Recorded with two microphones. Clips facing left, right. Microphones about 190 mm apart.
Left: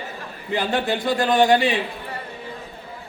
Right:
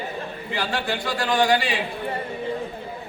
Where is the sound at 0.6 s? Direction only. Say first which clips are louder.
Left 4 dB; 20° left (ahead or behind).